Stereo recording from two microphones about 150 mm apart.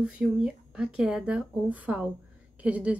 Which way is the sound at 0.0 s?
5° right (ahead or behind).